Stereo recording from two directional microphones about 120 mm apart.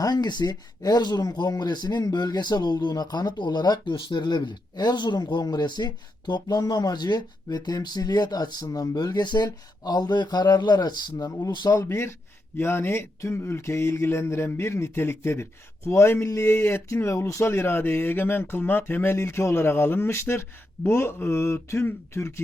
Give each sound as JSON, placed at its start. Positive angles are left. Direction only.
{"t": 0.0, "sound": "speech", "side_deg": 35}
{"t": 11.8, "sound": "speech", "side_deg": 20}